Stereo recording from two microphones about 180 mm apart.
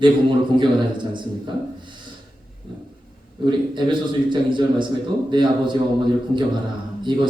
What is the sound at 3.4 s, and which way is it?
Speech, 25° right (ahead or behind).